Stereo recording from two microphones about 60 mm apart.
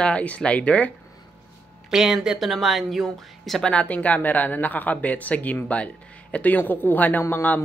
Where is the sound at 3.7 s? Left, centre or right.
Left.